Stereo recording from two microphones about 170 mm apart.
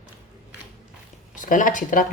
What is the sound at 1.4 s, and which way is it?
Speech, 50° left (ahead or behind).